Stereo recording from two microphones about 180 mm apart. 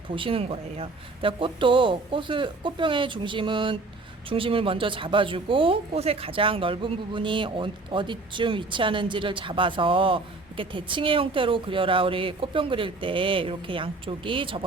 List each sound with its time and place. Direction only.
0.1 s speech: 30° right (ahead or behind)